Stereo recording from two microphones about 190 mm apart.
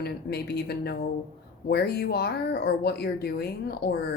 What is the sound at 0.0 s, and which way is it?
Speech, 60° left (ahead or behind).